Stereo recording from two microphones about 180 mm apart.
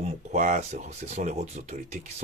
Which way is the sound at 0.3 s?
40° right (ahead or behind).